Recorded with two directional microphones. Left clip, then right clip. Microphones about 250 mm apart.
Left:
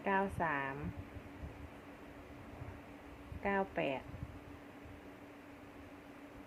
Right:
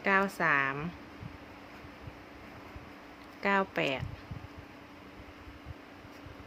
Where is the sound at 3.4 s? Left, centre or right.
Right.